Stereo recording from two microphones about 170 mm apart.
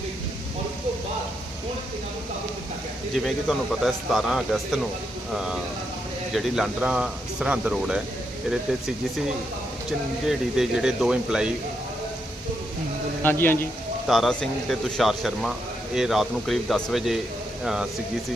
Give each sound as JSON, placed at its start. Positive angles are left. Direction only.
{"t": 3.8, "sound": "speech", "side_deg": 0}
{"t": 10.2, "sound": "speech", "side_deg": -5}
{"t": 13.2, "sound": "a man's voice", "side_deg": 10}
{"t": 14.1, "sound": "speech", "side_deg": 0}